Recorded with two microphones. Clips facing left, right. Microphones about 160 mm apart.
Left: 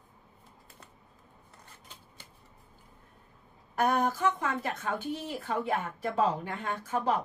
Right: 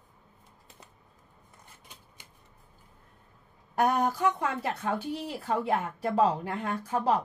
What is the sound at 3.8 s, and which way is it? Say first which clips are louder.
A woman's voice: right 2 dB; 35° right (ahead or behind).